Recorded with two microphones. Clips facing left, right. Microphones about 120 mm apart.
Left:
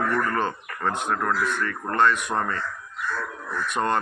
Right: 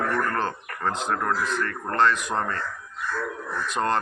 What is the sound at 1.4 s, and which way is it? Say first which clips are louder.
Speech: left 1 dB; 85° right.